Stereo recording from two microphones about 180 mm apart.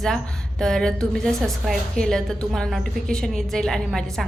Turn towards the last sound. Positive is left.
turn(degrees=0)  # may be behind; listen again after turning